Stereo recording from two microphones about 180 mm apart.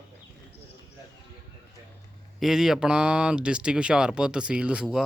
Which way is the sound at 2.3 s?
Centre (ahead or behind).